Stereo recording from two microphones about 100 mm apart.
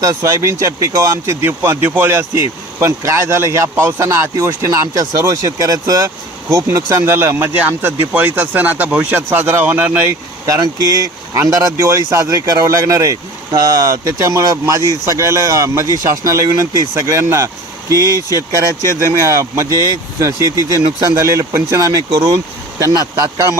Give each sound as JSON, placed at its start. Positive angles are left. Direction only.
{"t": 0.0, "sound": "speech", "side_deg": -35}
{"t": 10.4, "sound": "speech", "side_deg": -35}